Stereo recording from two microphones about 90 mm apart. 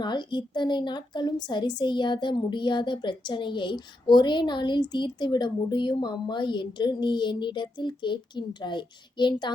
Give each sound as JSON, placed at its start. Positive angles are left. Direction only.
{"t": 0.0, "sound": "a woman's voice", "side_deg": 55}